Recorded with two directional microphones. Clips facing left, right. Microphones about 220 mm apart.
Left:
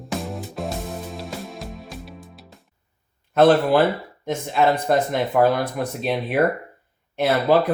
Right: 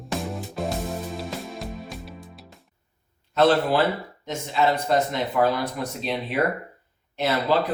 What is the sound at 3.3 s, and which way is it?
Speech, 50° left (ahead or behind).